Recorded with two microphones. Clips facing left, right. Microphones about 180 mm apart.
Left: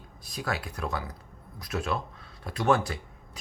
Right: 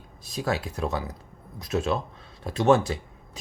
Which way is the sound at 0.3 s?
25° right (ahead or behind).